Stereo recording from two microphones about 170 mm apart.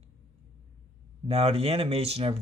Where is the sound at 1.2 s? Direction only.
35° right (ahead or behind).